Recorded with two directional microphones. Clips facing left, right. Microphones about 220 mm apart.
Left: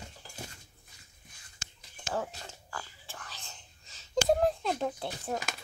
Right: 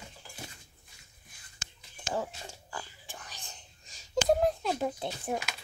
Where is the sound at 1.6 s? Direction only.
15° right (ahead or behind).